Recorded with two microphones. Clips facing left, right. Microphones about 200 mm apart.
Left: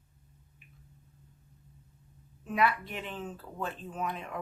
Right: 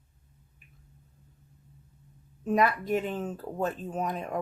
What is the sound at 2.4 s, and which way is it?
Speech, 45° right (ahead or behind).